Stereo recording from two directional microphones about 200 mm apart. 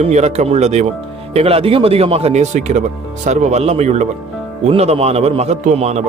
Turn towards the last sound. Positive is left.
turn(degrees=-35)  # may be behind; listen again after turning